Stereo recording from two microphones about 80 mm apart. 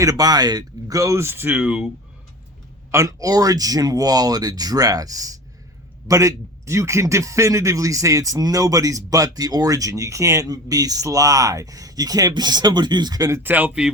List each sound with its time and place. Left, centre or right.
0.0 s speech: right; by 1.9 s centre
2.9 s speech: right
12.3 s speech: right
13.4 s speech: right